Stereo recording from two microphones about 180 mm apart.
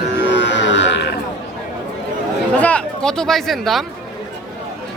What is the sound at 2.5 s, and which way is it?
Speech, 5° left (ahead or behind).